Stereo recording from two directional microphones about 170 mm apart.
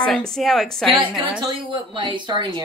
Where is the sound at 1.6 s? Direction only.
30° right (ahead or behind).